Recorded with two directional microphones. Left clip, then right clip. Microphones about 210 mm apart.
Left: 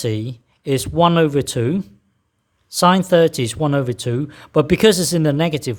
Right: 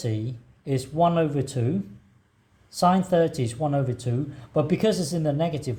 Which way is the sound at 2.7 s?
40° left (ahead or behind).